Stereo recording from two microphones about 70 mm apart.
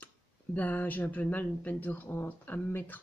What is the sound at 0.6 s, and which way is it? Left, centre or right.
Speech, left.